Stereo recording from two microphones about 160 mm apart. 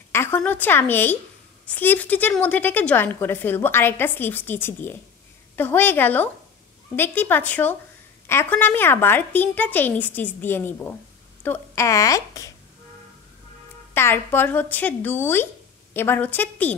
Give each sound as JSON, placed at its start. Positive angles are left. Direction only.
{"t": 0.1, "sound": "a woman's voice", "side_deg": 15}
{"t": 13.9, "sound": "a woman's voice", "side_deg": 15}